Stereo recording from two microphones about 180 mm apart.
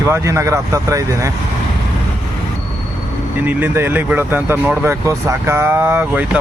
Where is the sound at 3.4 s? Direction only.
10° right (ahead or behind).